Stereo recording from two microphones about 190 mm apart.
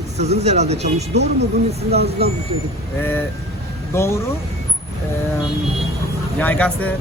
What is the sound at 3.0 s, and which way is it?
Speech, 10° left (ahead or behind).